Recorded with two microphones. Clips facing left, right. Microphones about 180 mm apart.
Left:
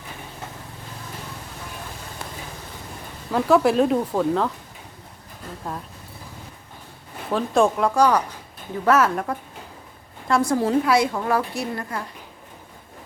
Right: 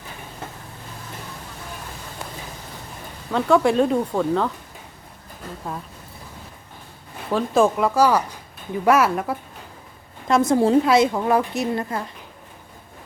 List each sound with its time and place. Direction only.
3.3 s speech: 5° left (ahead or behind)
5.7 s speech: 5° right (ahead or behind)
7.3 s speech: centre (ahead or behind)
10.2 s a woman's voice: 20° right (ahead or behind)